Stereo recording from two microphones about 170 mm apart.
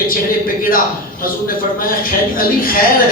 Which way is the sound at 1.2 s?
55° left (ahead or behind).